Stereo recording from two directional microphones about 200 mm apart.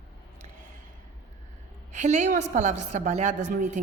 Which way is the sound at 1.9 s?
35° right (ahead or behind).